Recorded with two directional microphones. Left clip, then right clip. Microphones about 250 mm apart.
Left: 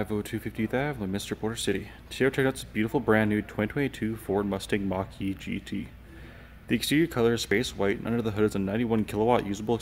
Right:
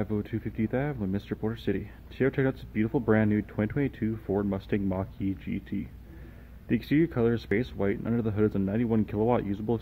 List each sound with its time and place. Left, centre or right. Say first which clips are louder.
0.0 s speech: left 1 dB; centre